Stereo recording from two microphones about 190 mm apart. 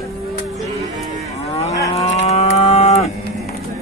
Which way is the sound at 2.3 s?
35° left (ahead or behind).